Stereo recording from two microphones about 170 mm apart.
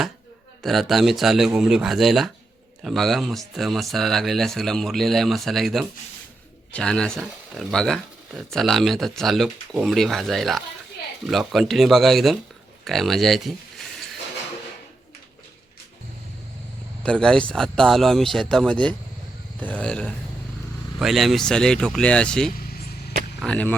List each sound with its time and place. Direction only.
0.6 s speech: centre (ahead or behind)
12.8 s a sound: centre (ahead or behind)
17.0 s speech: 5° left (ahead or behind)
22.5 s vehicle: 60° left (ahead or behind)
23.4 s speech: 5° left (ahead or behind)